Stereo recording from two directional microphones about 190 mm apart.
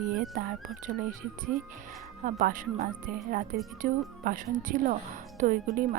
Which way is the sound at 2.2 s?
45° right (ahead or behind).